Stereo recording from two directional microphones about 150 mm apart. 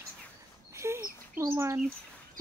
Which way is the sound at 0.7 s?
20° right (ahead or behind).